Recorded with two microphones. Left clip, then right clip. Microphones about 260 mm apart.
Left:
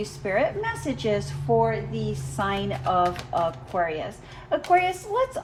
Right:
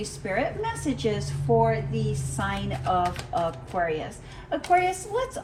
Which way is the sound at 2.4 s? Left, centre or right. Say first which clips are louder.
Left 4 dB; left.